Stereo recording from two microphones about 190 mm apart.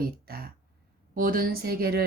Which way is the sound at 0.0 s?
50° right (ahead or behind).